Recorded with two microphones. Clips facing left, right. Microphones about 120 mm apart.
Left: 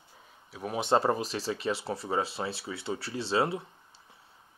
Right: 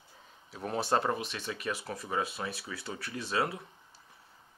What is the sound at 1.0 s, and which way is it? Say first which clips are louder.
Speech: left 5 dB; 35° left (ahead or behind).